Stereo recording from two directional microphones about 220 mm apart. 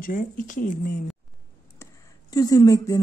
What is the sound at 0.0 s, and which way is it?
Speech, 35° left (ahead or behind).